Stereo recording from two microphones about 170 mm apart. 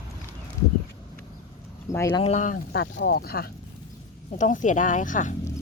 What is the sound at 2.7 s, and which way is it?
Speech, 80° left.